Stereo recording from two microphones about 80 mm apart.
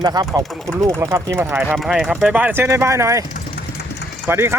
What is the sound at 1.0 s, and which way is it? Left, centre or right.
Speech, right.